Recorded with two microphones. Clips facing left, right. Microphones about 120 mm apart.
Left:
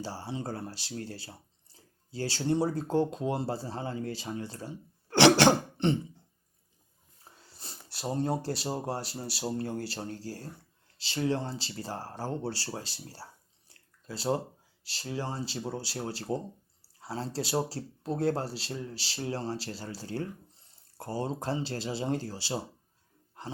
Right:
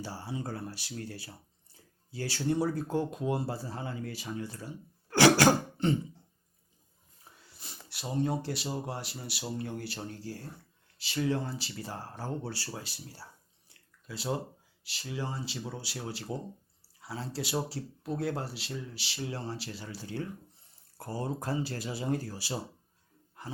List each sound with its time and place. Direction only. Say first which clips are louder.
0.0 s speech: left 2 dB; 30° left (ahead or behind)
7.4 s speech: left 1 dB; 35° left (ahead or behind)
13.7 s a sound: left 3 dB; 35° left (ahead or behind)
14.8 s speech: left 2 dB; 30° left (ahead or behind)
23.4 s roar: left 2 dB; 30° left (ahead or behind)